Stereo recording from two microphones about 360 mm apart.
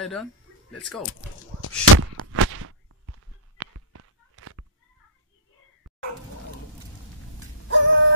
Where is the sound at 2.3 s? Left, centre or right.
Right.